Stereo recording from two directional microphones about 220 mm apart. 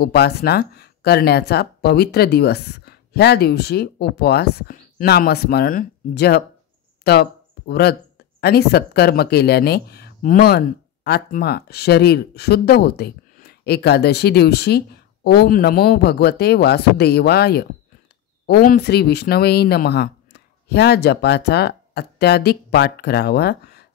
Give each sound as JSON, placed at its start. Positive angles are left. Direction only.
{"t": 0.0, "sound": "speech", "side_deg": 50}
{"t": 7.1, "sound": "a sound", "side_deg": 45}
{"t": 8.4, "sound": "speech", "side_deg": 45}